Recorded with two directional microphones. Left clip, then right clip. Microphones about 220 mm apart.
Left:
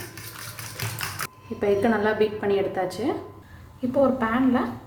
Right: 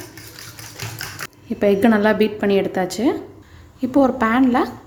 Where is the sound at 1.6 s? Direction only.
45° right (ahead or behind).